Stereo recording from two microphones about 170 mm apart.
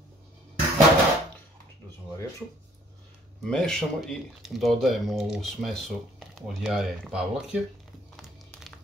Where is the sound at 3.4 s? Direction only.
5° left (ahead or behind).